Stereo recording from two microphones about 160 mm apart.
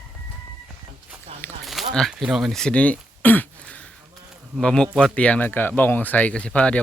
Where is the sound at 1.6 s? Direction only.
Centre (ahead or behind).